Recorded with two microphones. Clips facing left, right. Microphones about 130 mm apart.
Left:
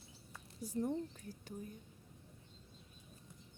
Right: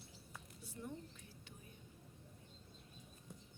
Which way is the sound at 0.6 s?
40° left (ahead or behind).